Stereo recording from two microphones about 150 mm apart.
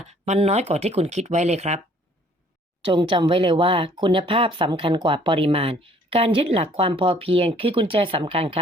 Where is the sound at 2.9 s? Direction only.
35° right (ahead or behind).